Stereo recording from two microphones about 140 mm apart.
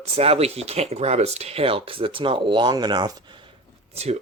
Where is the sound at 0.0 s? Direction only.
45° right (ahead or behind); by 3.1 s 30° right (ahead or behind).